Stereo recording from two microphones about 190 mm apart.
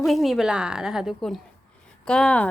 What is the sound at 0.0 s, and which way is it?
A woman's voice, centre (ahead or behind).